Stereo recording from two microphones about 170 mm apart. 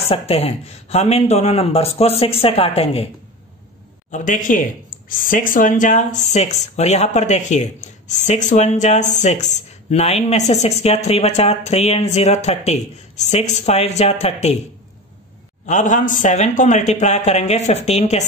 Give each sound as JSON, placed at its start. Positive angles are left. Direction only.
{"t": 0.1, "sound": "speech", "side_deg": 35}
{"t": 4.1, "sound": "speech", "side_deg": 50}
{"t": 15.6, "sound": "speech", "side_deg": 45}